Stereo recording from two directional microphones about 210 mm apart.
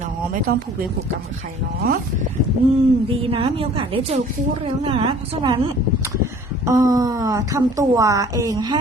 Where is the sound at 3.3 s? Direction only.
25° right (ahead or behind).